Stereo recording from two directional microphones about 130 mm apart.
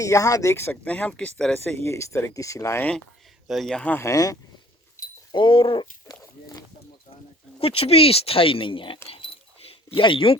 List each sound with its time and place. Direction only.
0.0 s speech: 25° left (ahead or behind); by 1.5 s 5° left (ahead or behind)
1.8 s speech: 20° left (ahead or behind)
3.4 s speech: centre (ahead or behind)
3.9 s speech: 25° left (ahead or behind)
5.3 s speech: 40° left (ahead or behind)
7.6 s speech: 50° left (ahead or behind)
9.0 s keys jangling: 45° left (ahead or behind)